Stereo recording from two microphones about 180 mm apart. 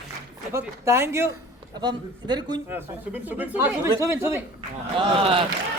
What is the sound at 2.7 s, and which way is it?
Speech, 10° right (ahead or behind).